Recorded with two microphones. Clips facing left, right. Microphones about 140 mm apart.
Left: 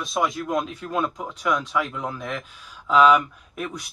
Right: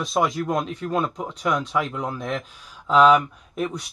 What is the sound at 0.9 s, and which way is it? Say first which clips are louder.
Speech: right 1 dB; 30° right (ahead or behind).